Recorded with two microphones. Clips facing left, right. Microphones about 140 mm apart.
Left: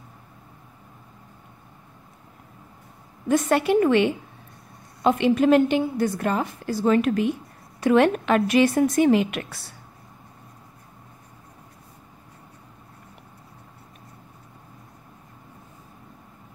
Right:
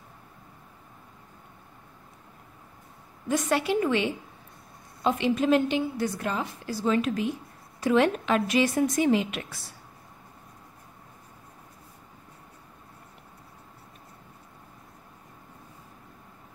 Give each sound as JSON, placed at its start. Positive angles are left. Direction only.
{"t": 3.3, "sound": "a woman's voice", "side_deg": 55}